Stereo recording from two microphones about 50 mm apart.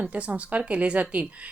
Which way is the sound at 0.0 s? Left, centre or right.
Right.